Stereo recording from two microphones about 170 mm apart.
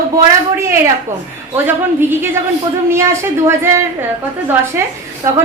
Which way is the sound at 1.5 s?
10° right (ahead or behind).